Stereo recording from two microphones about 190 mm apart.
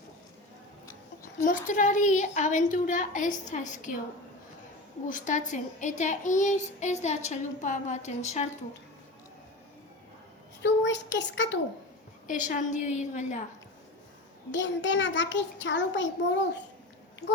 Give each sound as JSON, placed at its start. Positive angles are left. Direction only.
{"t": 1.2, "sound": "a child's voice", "side_deg": 45}
{"t": 5.0, "sound": "a child's voice", "side_deg": 40}
{"t": 10.6, "sound": "a child's voice", "side_deg": 65}
{"t": 12.3, "sound": "a child's voice", "side_deg": 40}
{"t": 14.5, "sound": "a child's voice", "side_deg": 70}